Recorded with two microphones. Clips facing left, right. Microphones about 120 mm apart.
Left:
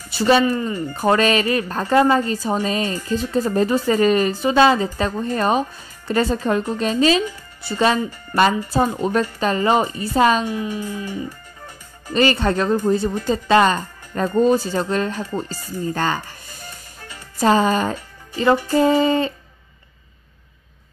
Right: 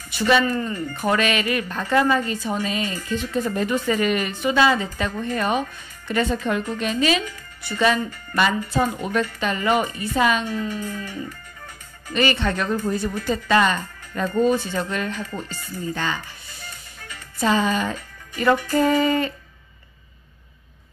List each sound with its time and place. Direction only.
0.1 s speech: 30° left (ahead or behind)
0.5 s speech: 15° left (ahead or behind)
0.7 s speech: 35° left (ahead or behind)
10.4 s speech: 10° left (ahead or behind)
12.1 s speech: 35° left (ahead or behind)
18.7 s a sound: 30° left (ahead or behind)